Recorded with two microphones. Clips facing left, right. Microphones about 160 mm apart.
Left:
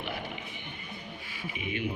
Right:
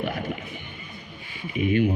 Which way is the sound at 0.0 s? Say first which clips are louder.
Right 8 dB; 45° right (ahead or behind).